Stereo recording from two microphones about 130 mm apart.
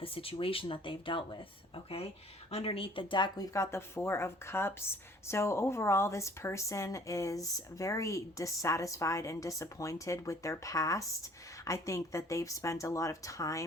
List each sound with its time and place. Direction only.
0.0 s speech: 45° left (ahead or behind)
3.5 s a woman's voice: 20° left (ahead or behind)